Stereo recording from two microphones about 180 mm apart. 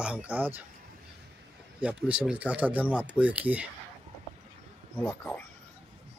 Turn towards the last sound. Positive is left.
turn(degrees=10)  # may be behind; listen again after turning